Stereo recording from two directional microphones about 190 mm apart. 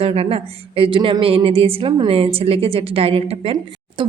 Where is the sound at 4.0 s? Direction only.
25° right (ahead or behind).